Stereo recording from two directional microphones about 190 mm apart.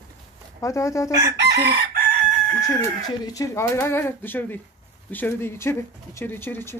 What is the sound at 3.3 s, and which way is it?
Speech, 15° left (ahead or behind).